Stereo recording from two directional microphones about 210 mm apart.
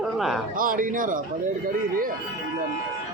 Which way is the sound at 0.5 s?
40° right (ahead or behind).